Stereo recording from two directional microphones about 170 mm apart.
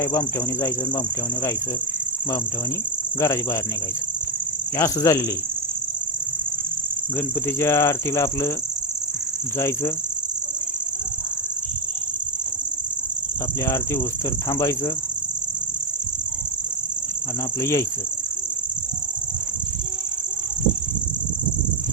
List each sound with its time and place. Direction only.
0.0 s cricket: 15° left (ahead or behind)
3.2 s cricket: 15° left (ahead or behind)
4.8 s cricket: 20° left (ahead or behind)
7.4 s cricket: 15° left (ahead or behind)
9.6 s cricket: 15° left (ahead or behind)
13.7 s cricket: 15° left (ahead or behind)
17.6 s cricket: 15° left (ahead or behind)